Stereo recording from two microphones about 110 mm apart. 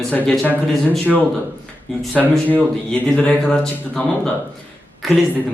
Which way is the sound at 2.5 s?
15° left (ahead or behind).